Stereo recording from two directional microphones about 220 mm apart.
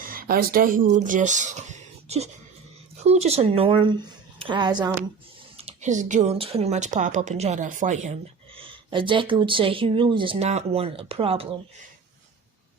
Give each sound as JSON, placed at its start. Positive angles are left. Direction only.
{"t": 0.0, "sound": "speech", "side_deg": -40}
{"t": 5.5, "sound": "speech", "side_deg": -30}